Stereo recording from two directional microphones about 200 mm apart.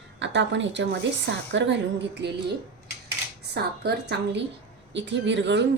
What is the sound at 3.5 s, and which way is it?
A woman's voice, 55° right (ahead or behind).